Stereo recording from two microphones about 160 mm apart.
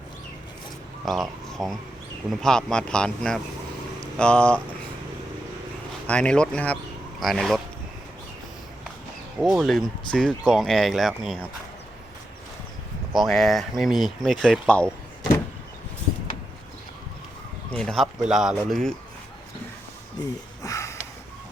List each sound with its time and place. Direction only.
1.0 s speech: centre (ahead or behind)
6.1 s speech: 5° left (ahead or behind)
9.4 s speech: centre (ahead or behind)
13.1 s speech: centre (ahead or behind)
17.7 s speech: 5° left (ahead or behind)
20.1 s a sound: 20° left (ahead or behind)